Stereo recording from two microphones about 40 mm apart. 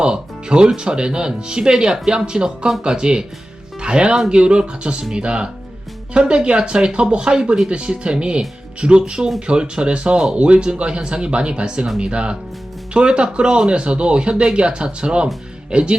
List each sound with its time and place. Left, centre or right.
0.0 s music: right
0.8 s speech: right